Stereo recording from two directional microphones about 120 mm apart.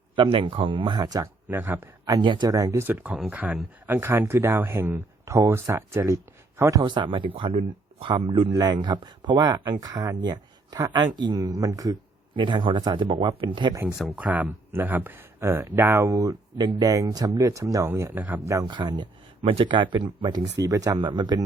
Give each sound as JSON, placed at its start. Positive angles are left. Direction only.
{"t": 0.2, "sound": "speech", "side_deg": -45}
{"t": 1.5, "sound": "speech", "side_deg": -20}
{"t": 2.1, "sound": "speech", "side_deg": -35}
{"t": 8.5, "sound": "speech", "side_deg": -35}
{"t": 12.3, "sound": "speech", "side_deg": -40}
{"t": 14.2, "sound": "speech", "side_deg": -10}
{"t": 18.6, "sound": "speech", "side_deg": -35}
{"t": 19.4, "sound": "speech", "side_deg": -50}